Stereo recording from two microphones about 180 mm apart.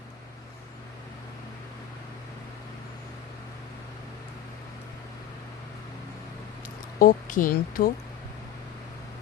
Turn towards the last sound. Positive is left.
turn(degrees=55)  # may be behind; listen again after turning